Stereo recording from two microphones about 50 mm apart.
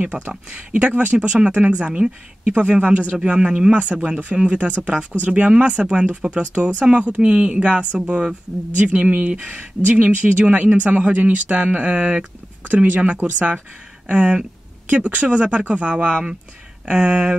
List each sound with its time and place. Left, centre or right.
0.3 s speech: right
8.7 s speech: right
9.3 s speech: centre
9.8 s speech: right